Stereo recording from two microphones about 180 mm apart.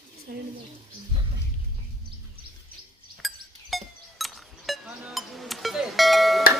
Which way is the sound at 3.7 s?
Centre (ahead or behind).